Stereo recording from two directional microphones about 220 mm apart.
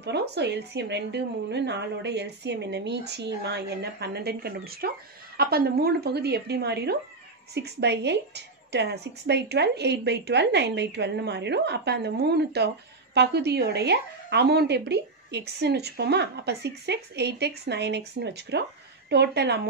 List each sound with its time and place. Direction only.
0.0 s a woman's voice: 50° right (ahead or behind)